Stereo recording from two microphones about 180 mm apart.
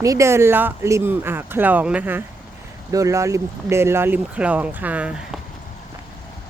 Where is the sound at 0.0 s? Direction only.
15° right (ahead or behind).